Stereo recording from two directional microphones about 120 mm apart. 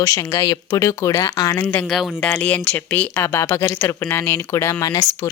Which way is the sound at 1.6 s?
15° left (ahead or behind).